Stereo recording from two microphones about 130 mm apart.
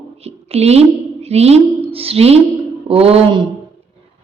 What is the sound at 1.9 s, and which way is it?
Mantra, 50° right (ahead or behind).